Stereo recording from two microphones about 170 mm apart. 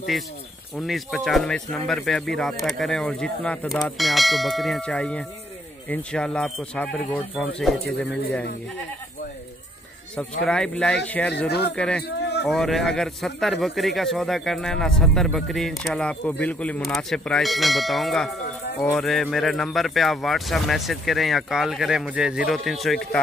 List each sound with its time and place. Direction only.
0.7 s speech: centre (ahead or behind)
10.4 s speech: 5° left (ahead or behind)
11.3 s speech: 75° left (ahead or behind)
11.7 s speech: 5° left (ahead or behind)
12.0 s a sound: 75° left (ahead or behind)
12.4 s speech: centre (ahead or behind)